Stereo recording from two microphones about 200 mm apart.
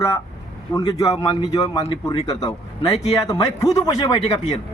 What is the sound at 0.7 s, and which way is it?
A man's voice, 15° left (ahead or behind).